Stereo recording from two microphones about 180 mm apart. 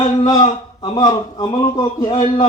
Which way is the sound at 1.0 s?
20° left (ahead or behind).